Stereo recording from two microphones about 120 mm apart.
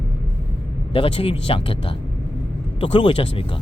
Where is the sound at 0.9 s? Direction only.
50° left (ahead or behind).